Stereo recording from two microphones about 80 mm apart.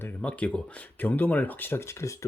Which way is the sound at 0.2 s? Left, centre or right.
Centre.